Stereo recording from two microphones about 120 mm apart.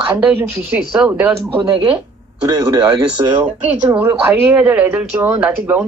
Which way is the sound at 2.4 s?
30° right (ahead or behind).